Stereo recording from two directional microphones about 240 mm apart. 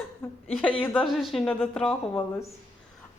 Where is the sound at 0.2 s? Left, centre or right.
Centre.